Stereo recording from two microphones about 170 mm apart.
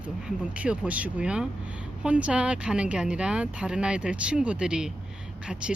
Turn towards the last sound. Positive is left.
turn(degrees=-5)  # may be behind; listen again after turning